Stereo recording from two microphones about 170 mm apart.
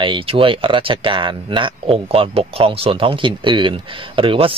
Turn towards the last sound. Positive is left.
turn(degrees=-30)  # may be behind; listen again after turning